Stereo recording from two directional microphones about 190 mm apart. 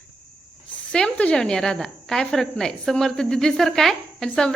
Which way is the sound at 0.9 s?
5° left (ahead or behind).